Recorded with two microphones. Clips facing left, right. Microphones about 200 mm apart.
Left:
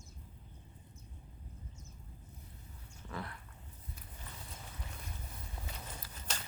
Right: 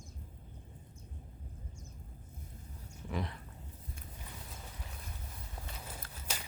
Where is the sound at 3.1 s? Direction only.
15° right (ahead or behind).